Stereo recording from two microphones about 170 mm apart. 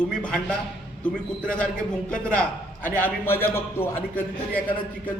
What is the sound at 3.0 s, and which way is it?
A man's voice, 10° left (ahead or behind).